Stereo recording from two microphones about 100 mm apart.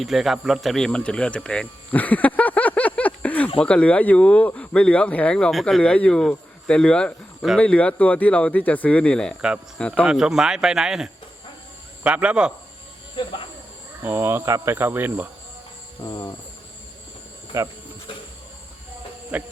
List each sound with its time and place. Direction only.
0.0 s speech: centre (ahead or behind)
10.1 s a man's voice: 5° right (ahead or behind)
14.0 s cricket: 25° right (ahead or behind)
16.0 s cricket: 40° left (ahead or behind)
17.5 s speech: 30° right (ahead or behind)
19.3 s a man's voice: 15° right (ahead or behind)